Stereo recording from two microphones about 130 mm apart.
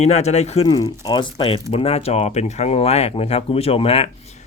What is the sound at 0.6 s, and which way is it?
Speech, 35° left (ahead or behind).